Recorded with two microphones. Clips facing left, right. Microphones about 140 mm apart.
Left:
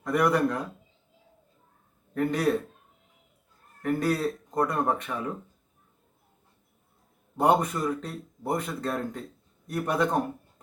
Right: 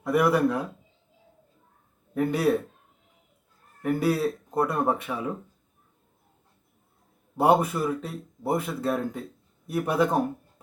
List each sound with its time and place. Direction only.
0.0 s speech: 5° right (ahead or behind)
2.1 s speech: 5° right (ahead or behind)
3.8 s speech: 10° right (ahead or behind)
7.3 s speech: 5° right (ahead or behind)